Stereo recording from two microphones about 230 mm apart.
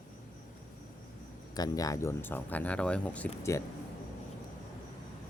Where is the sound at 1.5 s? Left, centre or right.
Centre.